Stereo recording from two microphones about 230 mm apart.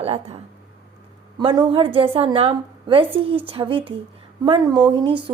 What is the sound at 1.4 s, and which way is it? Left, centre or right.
A woman's voice, right.